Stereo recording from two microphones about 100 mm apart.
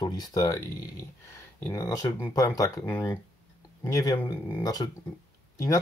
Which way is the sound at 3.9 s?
40° left (ahead or behind).